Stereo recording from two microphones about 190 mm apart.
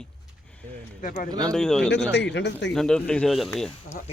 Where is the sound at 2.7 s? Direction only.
5° left (ahead or behind).